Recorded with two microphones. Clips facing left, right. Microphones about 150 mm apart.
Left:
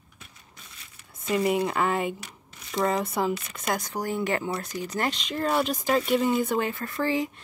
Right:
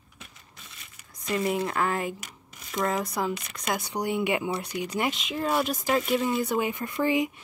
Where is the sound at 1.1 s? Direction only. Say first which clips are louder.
Left 3 dB; 5° left (ahead or behind).